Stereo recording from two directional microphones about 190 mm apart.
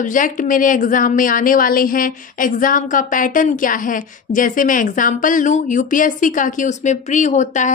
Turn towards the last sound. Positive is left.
turn(degrees=40)  # may be behind; listen again after turning